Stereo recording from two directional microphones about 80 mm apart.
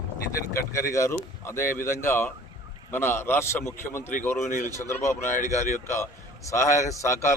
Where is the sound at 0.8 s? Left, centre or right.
Left.